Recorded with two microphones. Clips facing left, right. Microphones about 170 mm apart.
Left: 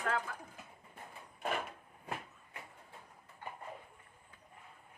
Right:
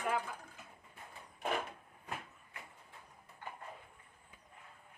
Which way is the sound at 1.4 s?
Centre (ahead or behind).